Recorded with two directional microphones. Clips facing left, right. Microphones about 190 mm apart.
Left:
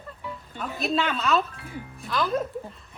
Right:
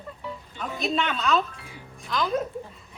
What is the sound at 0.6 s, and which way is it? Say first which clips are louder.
Speech: left 1 dB; 5° left (ahead or behind).